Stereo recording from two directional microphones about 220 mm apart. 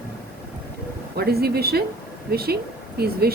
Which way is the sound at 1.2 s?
45° right (ahead or behind).